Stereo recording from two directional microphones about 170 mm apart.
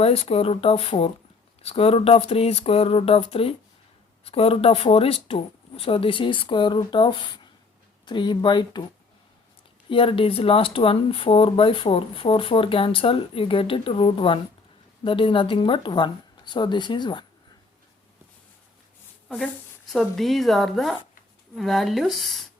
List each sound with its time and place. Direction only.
0.0 s speech: 35° left (ahead or behind)
9.9 s speech: 30° left (ahead or behind)
19.9 s speech: centre (ahead or behind)